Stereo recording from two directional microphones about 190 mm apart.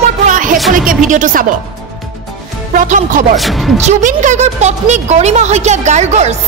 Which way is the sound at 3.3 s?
Centre (ahead or behind).